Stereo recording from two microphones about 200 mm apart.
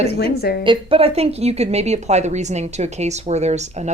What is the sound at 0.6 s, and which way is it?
Speech, 25° right (ahead or behind).